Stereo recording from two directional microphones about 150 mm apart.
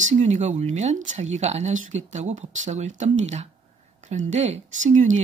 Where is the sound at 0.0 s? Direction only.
50° right (ahead or behind).